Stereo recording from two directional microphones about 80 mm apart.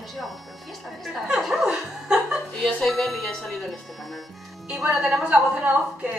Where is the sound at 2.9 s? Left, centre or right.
Centre.